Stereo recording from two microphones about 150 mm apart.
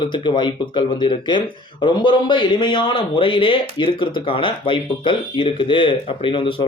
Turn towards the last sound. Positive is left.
turn(degrees=35)  # may be behind; listen again after turning